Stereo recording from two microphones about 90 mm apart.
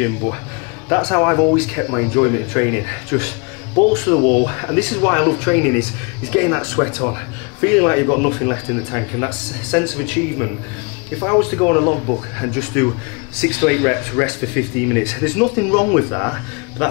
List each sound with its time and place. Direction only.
0.2 s speech: 20° left (ahead or behind)